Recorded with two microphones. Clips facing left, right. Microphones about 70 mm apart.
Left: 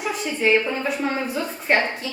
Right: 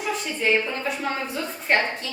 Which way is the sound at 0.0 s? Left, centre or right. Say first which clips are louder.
Left 3 dB; centre.